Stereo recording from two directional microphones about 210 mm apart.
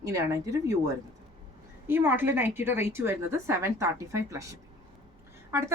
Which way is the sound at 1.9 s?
10° right (ahead or behind).